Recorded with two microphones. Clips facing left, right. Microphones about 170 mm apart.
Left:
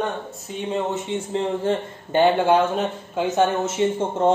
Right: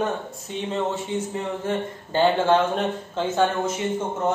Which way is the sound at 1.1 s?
30° left (ahead or behind).